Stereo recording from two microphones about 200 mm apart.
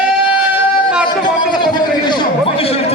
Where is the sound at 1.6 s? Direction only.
25° left (ahead or behind).